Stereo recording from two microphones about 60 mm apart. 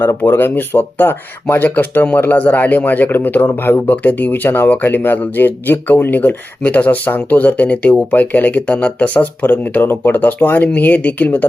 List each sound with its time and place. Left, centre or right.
0.2 s speech: left
9.8 s speech: left